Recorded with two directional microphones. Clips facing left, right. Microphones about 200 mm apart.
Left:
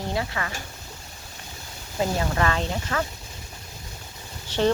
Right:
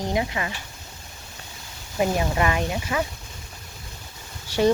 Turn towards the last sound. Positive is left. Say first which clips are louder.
# right 2 dB
turn(degrees=-10)  # may be behind; listen again after turning